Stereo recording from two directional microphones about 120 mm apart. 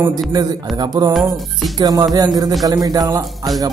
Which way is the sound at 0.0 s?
35° right (ahead or behind).